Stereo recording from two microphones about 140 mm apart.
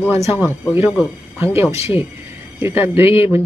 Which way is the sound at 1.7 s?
45° left (ahead or behind).